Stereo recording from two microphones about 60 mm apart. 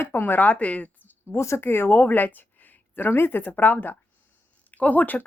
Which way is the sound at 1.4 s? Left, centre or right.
Left.